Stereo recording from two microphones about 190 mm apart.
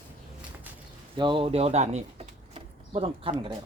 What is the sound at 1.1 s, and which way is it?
Speech, 25° right (ahead or behind).